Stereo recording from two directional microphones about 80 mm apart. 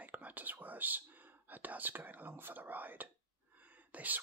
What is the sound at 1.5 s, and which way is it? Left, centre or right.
Speech, right.